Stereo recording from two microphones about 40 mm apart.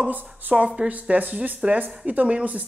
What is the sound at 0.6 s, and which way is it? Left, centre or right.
Speech, right.